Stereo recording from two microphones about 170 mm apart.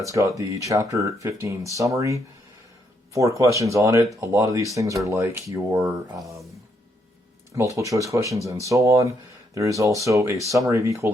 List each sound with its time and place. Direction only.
0.0 s speech: 20° right (ahead or behind)
7.5 s speech: 20° right (ahead or behind)